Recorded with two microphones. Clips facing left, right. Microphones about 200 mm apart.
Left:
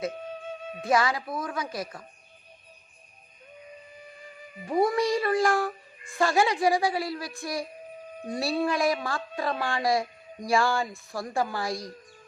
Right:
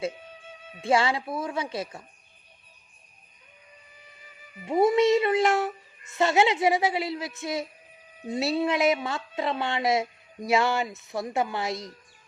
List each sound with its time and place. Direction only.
0.8 s a woman's voice: 25° right (ahead or behind)
4.6 s a woman's voice: 25° right (ahead or behind)